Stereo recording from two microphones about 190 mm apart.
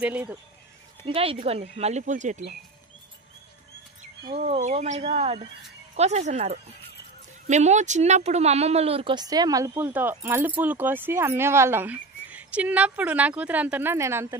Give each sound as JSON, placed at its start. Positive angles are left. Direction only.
{"t": 0.0, "sound": "speech", "side_deg": -10}
{"t": 1.0, "sound": "speech", "side_deg": -30}
{"t": 4.4, "sound": "speech", "side_deg": -35}